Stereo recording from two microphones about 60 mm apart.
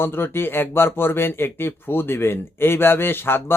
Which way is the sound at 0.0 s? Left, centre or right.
Left.